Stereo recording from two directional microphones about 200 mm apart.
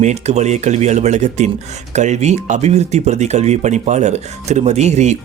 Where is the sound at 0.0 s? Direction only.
35° right (ahead or behind).